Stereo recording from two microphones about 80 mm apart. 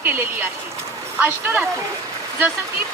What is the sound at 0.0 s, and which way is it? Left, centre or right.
Speech, right.